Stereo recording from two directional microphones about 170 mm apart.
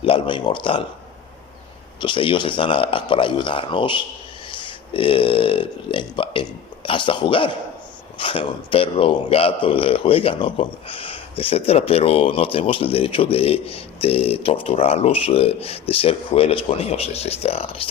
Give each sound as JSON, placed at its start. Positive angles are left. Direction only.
{"t": 0.0, "sound": "speech", "side_deg": 30}
{"t": 2.0, "sound": "speech", "side_deg": 30}